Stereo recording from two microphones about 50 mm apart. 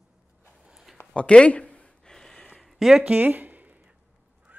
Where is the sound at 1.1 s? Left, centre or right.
Left.